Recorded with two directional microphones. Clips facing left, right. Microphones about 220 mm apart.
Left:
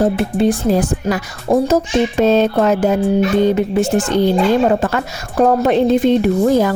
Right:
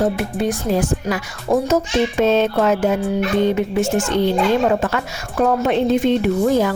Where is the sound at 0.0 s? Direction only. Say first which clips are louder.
Left 5 dB; 30° left (ahead or behind).